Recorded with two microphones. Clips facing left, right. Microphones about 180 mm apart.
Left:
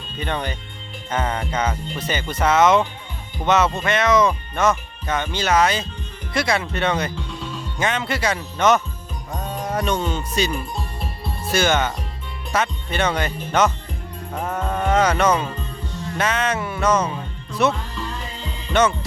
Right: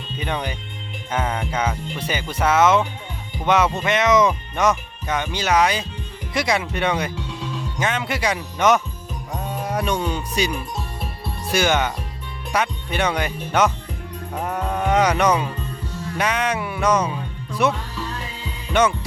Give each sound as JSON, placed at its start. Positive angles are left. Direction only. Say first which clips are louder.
{"t": 0.2, "sound": "speech", "louder": "left 1 dB", "side_deg": -10}
{"t": 10.5, "sound": "music", "louder": "left 1 dB", "side_deg": 0}
{"t": 11.5, "sound": "speech", "louder": "even", "side_deg": -15}
{"t": 14.5, "sound": "music", "louder": "even", "side_deg": -10}